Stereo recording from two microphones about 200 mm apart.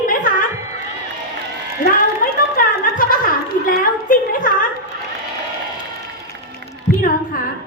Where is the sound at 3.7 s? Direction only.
45° left (ahead or behind).